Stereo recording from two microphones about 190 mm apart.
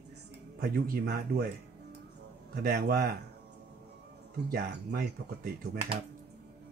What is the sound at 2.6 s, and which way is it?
Speech, 55° right (ahead or behind).